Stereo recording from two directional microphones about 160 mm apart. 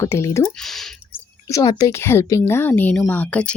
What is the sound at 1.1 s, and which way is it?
Speech, 20° left (ahead or behind).